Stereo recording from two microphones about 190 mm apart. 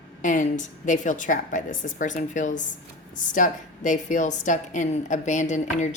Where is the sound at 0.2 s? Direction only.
40° left (ahead or behind).